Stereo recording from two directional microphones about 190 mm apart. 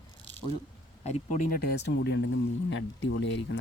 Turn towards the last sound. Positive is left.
turn(degrees=75)  # may be behind; listen again after turning